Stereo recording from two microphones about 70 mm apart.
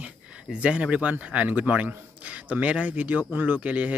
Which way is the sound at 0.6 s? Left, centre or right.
Centre.